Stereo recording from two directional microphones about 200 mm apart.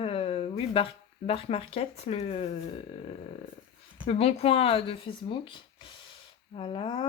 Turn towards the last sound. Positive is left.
turn(degrees=25)  # may be behind; listen again after turning